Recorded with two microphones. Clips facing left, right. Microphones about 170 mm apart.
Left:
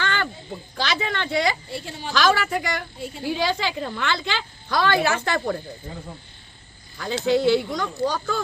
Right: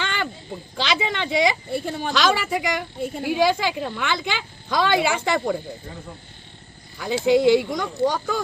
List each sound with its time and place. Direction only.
0.0 s a sound: 15° right (ahead or behind)
0.8 s a woman's voice: 15° right (ahead or behind)
1.7 s a woman's voice: 50° right (ahead or behind)
2.1 s a woman's voice: 15° right (ahead or behind)
7.0 s a woman's voice: 10° right (ahead or behind)